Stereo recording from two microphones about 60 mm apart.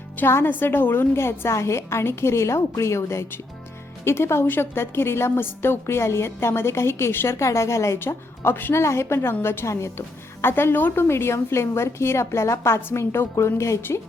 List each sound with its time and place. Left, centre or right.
0.3 s a woman's voice: left
5.8 s a woman's voice: left
8.4 s a woman's voice: left
8.8 s a woman's voice: left